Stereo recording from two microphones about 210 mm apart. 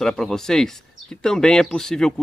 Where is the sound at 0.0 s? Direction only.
Centre (ahead or behind).